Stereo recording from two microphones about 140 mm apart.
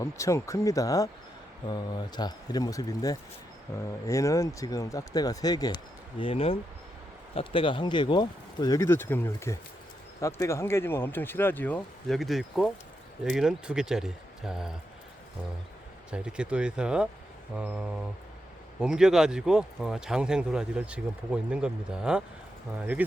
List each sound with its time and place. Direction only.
0.0 s speech: 20° left (ahead or behind); by 14.7 s 5° right (ahead or behind)
16.1 s speech: 5° right (ahead or behind)